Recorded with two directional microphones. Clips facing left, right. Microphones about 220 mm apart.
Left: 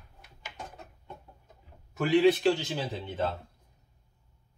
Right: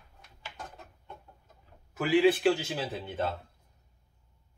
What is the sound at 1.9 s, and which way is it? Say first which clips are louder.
Speech: left 1 dB; 5° right (ahead or behind).